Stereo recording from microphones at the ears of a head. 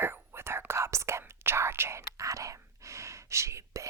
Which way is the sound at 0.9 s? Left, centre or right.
Right.